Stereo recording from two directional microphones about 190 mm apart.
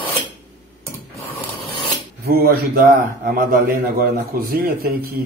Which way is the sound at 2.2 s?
55° right (ahead or behind).